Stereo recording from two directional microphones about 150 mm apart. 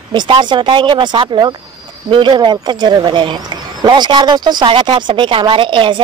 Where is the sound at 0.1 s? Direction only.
30° right (ahead or behind).